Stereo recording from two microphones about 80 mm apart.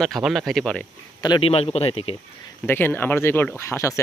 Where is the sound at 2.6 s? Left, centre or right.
Left.